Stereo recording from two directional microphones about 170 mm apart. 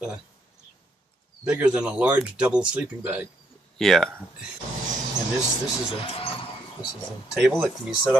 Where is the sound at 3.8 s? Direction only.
5° left (ahead or behind).